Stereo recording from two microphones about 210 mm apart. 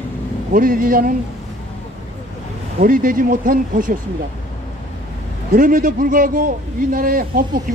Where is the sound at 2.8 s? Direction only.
40° right (ahead or behind).